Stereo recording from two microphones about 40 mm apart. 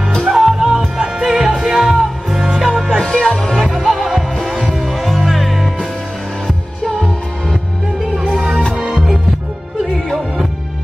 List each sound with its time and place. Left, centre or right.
0.2 s music: centre
3.0 s music: centre
3.4 s music: centre
8.2 s music: centre
9.9 s music: centre